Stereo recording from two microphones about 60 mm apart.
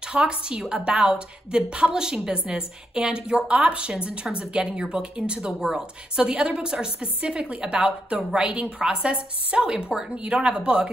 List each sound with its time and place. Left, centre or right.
0.1 s a woman's voice: centre